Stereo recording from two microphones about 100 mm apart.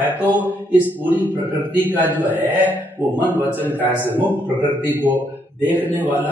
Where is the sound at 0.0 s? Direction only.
20° right (ahead or behind).